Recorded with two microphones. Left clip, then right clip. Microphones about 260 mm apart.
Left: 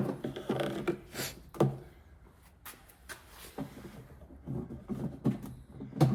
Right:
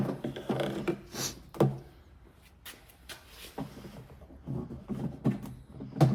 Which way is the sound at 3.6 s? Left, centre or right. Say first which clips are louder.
Right 1 dB; centre.